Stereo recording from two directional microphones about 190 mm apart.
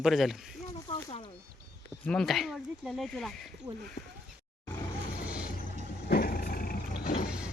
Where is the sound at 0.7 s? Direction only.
30° left (ahead or behind).